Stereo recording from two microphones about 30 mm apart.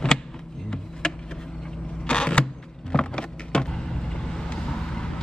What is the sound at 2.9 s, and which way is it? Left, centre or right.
Vehicle, left.